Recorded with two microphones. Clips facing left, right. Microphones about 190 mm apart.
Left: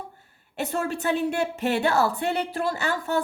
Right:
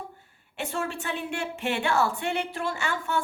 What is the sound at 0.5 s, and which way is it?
A woman's voice, 40° left (ahead or behind).